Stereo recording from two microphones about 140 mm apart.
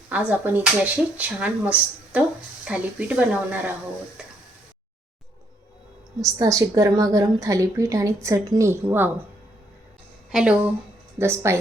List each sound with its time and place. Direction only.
0.1 s speech: 10° right (ahead or behind)
6.2 s a woman's voice: 25° right (ahead or behind)
10.3 s speech: 5° right (ahead or behind)
11.2 s a woman's voice: 20° right (ahead or behind)